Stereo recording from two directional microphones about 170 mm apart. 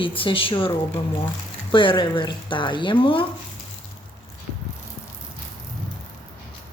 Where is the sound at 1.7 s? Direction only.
30° left (ahead or behind).